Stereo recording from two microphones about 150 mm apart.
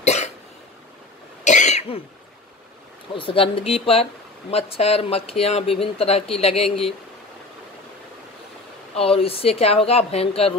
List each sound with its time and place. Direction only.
0.0 s cough: 45° left (ahead or behind)
1.4 s cough: 50° left (ahead or behind)
3.2 s speech: 35° left (ahead or behind)
8.9 s speech: 40° left (ahead or behind)